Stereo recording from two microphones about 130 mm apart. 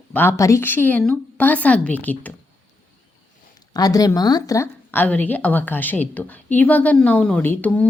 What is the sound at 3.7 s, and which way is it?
Speech, 30° left (ahead or behind).